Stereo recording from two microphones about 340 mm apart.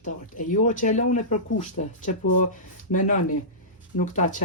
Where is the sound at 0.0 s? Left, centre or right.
Left.